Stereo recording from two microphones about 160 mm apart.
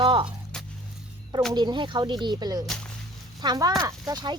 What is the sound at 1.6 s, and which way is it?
Speech, 30° right (ahead or behind).